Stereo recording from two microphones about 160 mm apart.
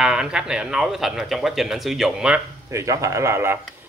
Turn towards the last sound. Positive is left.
turn(degrees=-15)  # may be behind; listen again after turning